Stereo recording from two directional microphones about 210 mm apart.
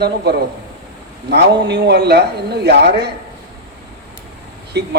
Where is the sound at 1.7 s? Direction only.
55° right (ahead or behind).